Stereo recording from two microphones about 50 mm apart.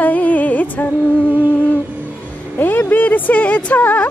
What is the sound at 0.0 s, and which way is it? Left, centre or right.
Music, left.